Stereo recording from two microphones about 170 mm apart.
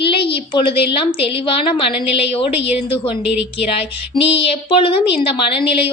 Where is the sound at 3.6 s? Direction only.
35° left (ahead or behind).